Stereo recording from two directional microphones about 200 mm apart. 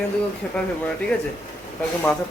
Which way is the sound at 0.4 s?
5° left (ahead or behind).